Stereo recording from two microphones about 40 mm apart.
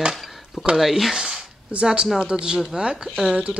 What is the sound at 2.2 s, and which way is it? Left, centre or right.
Speech, right.